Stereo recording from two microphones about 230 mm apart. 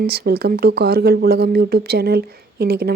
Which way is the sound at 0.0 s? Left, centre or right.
Right.